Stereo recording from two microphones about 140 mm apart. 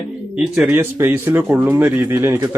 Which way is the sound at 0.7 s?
15° right (ahead or behind).